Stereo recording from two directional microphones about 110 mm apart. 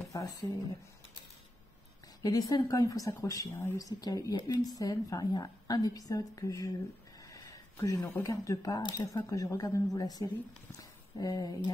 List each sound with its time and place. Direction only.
0.0 s speech: 35° left (ahead or behind)
2.2 s a woman's voice: 35° left (ahead or behind)
7.2 s a sound: 30° left (ahead or behind)
7.8 s a woman's voice: 35° left (ahead or behind)